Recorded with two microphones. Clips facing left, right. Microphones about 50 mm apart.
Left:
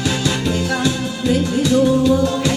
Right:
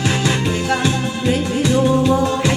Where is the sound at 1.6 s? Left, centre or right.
Right.